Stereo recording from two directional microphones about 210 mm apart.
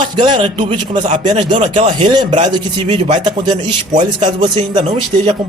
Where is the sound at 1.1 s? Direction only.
35° right (ahead or behind).